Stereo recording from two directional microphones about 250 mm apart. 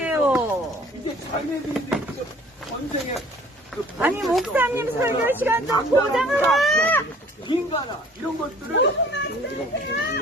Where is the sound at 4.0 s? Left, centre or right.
Centre.